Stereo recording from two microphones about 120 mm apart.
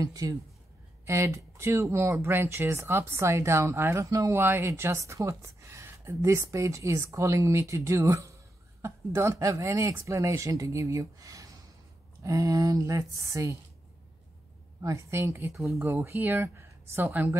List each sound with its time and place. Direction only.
0.0 s speech: 30° right (ahead or behind)
14.8 s speech: 25° right (ahead or behind)